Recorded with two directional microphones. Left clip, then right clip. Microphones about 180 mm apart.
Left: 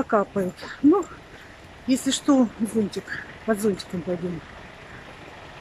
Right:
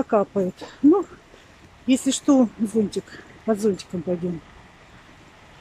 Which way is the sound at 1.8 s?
15° right (ahead or behind).